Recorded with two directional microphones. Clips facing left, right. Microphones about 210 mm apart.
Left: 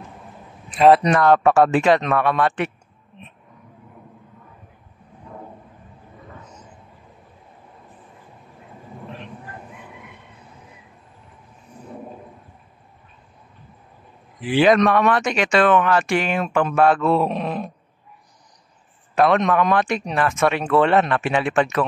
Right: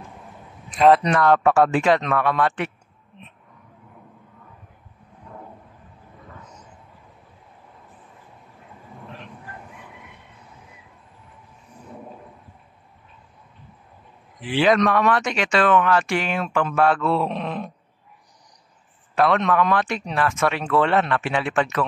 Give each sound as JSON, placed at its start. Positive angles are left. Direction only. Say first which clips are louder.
{"t": 0.7, "sound": "speech", "louder": "left 2 dB", "side_deg": 10}
{"t": 14.4, "sound": "speech", "louder": "left 3 dB", "side_deg": 15}
{"t": 19.1, "sound": "speech", "louder": "left 2 dB", "side_deg": 20}